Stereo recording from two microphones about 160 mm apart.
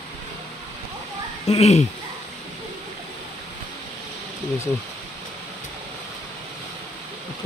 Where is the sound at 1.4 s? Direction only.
40° left (ahead or behind).